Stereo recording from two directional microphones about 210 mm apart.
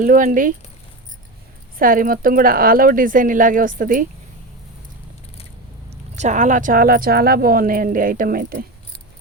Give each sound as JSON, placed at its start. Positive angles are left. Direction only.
{"t": 0.0, "sound": "speech", "side_deg": -40}
{"t": 1.8, "sound": "speech", "side_deg": -40}
{"t": 5.9, "sound": "speech", "side_deg": -35}